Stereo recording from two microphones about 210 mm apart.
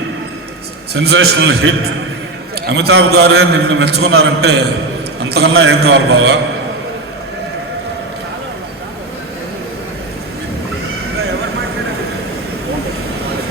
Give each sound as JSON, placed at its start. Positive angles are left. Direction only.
{"t": 0.9, "sound": "a man's voice", "side_deg": -55}
{"t": 5.5, "sound": "a man's voice", "side_deg": -70}